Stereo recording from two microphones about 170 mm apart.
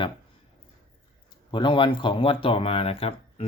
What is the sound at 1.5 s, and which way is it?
Speech, 30° left (ahead or behind).